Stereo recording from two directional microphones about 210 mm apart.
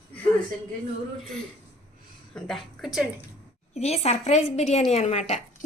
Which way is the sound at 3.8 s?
30° left (ahead or behind).